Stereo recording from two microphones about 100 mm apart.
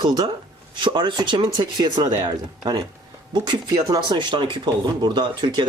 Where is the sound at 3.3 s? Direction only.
45° right (ahead or behind).